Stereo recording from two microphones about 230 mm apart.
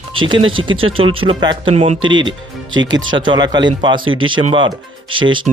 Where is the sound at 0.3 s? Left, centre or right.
Right.